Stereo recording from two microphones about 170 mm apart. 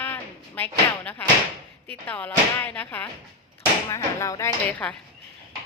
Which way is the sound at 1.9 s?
10° left (ahead or behind).